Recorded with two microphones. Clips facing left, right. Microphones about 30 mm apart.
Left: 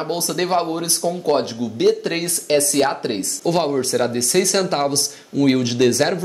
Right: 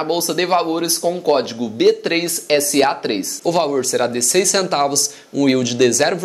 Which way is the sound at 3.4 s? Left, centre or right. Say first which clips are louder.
Right 2 dB; centre.